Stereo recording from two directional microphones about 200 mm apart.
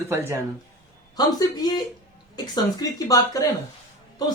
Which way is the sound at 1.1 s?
20° left (ahead or behind).